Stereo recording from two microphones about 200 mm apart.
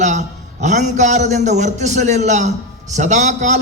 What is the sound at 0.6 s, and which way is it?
A man's voice, 35° right (ahead or behind).